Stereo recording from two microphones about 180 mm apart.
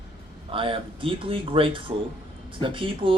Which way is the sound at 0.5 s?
30° right (ahead or behind).